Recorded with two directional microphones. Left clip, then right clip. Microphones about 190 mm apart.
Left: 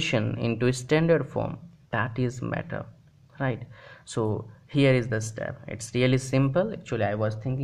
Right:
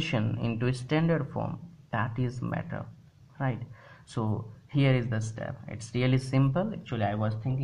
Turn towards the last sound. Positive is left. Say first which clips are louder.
# left 4 dB
turn(degrees=40)  # may be behind; listen again after turning